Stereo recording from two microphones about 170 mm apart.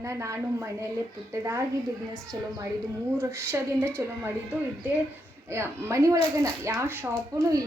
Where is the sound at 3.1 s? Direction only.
15° right (ahead or behind).